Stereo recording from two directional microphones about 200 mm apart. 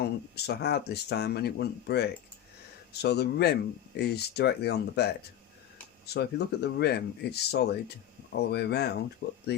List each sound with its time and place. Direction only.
0.0 s speech: 55° left (ahead or behind)
6.1 s speech: 55° left (ahead or behind)